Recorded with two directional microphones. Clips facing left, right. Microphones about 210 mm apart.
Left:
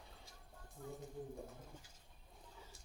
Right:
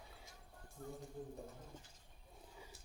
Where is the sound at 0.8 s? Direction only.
45° right (ahead or behind).